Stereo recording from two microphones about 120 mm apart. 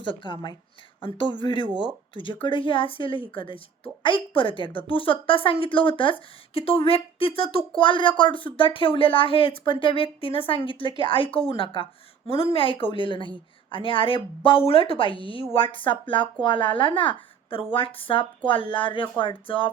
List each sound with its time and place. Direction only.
0.0 s a woman's voice: 40° left (ahead or behind)